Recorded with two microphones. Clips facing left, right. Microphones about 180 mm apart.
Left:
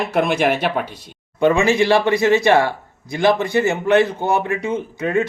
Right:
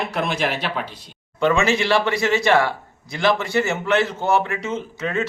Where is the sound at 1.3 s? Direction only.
15° left (ahead or behind).